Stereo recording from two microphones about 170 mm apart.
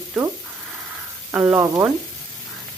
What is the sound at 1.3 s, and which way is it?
Speech, 10° right (ahead or behind).